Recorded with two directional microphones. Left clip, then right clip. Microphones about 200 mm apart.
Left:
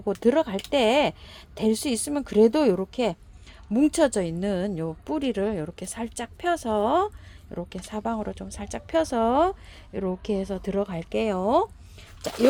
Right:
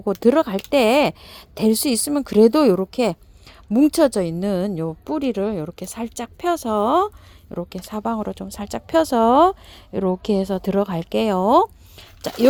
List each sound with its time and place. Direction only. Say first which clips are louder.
0.0 s speech: right 5 dB; 30° right (ahead or behind)